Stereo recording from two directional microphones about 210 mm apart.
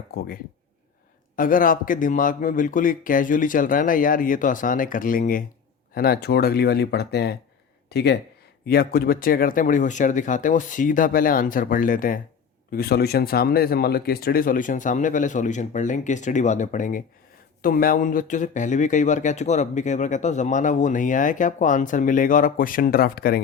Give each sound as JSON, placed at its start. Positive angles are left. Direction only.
{"t": 0.1, "sound": "speech", "side_deg": 45}
{"t": 1.4, "sound": "speech", "side_deg": 40}